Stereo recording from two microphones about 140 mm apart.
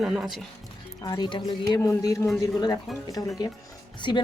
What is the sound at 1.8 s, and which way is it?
Speech, 20° left (ahead or behind).